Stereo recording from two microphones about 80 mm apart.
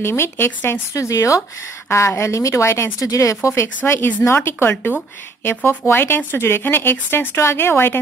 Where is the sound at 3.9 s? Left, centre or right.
Left.